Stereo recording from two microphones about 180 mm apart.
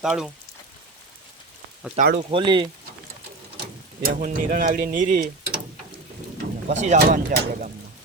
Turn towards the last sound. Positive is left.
turn(degrees=-45)  # may be behind; listen again after turning